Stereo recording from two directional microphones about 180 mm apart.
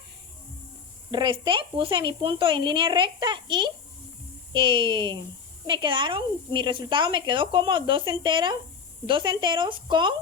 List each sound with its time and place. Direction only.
1.1 s speech: 25° right (ahead or behind)